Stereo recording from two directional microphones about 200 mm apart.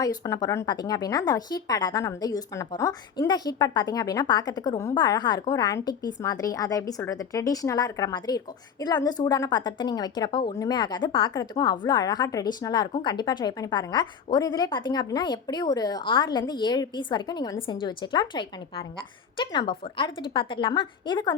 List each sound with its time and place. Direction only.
0.0 s a woman's voice: 20° left (ahead or behind)